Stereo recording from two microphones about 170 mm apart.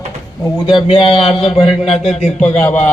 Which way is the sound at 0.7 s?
30° left (ahead or behind).